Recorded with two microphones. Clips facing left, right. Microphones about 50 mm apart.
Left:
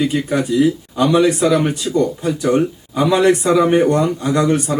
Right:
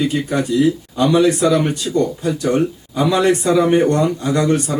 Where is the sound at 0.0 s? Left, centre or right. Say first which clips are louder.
Left 1 dB; centre.